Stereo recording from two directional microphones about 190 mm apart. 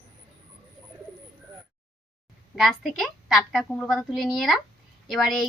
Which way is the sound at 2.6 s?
Centre (ahead or behind).